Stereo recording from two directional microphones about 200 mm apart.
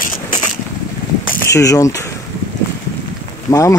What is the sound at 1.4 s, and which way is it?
Speech, 15° left (ahead or behind).